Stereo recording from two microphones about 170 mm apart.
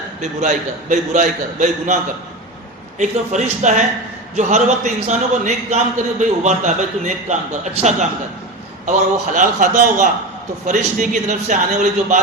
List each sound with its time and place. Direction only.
0.2 s a man's voice: 45° right (ahead or behind)
3.0 s a man's voice: 45° right (ahead or behind)